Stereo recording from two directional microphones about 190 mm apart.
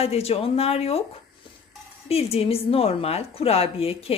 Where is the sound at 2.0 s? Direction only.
30° left (ahead or behind).